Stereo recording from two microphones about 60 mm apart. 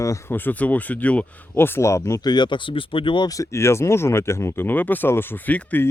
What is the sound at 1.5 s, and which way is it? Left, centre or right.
Speech, left.